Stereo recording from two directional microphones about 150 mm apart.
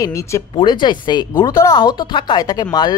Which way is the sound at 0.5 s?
30° left (ahead or behind).